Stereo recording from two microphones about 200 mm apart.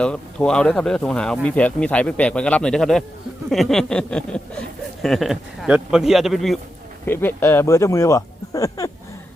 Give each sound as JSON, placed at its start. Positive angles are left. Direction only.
{"t": 0.0, "sound": "speech", "side_deg": 5}
{"t": 7.0, "sound": "speech", "side_deg": 10}